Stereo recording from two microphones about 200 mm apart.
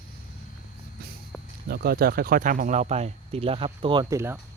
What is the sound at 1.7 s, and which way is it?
Speech, 50° right (ahead or behind).